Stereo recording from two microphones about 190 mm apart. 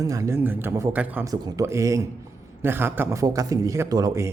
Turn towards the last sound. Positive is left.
turn(degrees=-20)  # may be behind; listen again after turning